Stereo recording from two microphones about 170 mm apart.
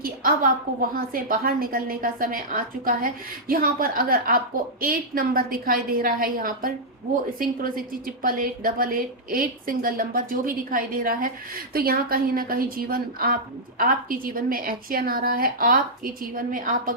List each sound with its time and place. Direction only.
0.0 s a woman's voice: 55° right (ahead or behind)